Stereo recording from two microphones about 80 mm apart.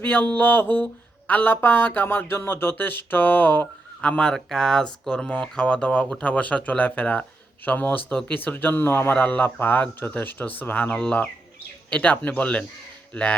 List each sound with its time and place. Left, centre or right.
0.0 s speech: left
10.9 s speech: centre